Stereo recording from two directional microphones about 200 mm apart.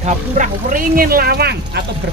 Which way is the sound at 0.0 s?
40° right (ahead or behind).